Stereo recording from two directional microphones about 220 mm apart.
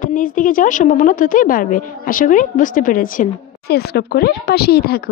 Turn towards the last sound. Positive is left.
turn(degrees=45)  # may be behind; listen again after turning